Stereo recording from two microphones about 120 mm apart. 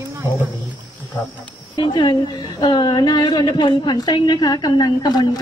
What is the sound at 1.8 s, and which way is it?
A woman's voice, 40° left (ahead or behind).